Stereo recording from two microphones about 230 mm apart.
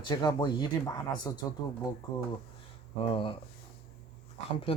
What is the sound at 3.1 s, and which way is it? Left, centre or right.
Speech, left.